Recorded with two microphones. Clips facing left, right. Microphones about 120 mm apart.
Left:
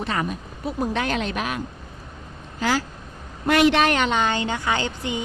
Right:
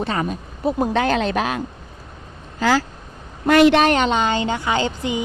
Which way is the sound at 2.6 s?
90° right.